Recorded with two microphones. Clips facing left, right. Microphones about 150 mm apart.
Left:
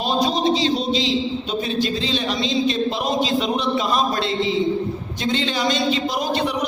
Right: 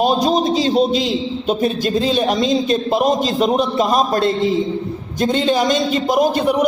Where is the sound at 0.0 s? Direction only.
45° right (ahead or behind).